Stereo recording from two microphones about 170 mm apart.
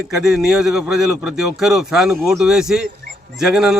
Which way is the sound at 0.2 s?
Centre (ahead or behind).